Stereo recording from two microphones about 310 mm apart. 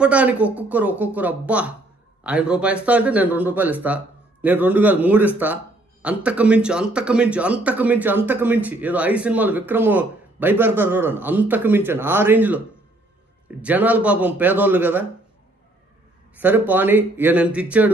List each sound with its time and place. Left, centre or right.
0.0 s speech: centre
16.3 s speech: centre